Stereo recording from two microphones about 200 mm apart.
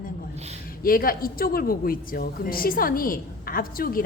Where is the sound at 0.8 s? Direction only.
45° left (ahead or behind).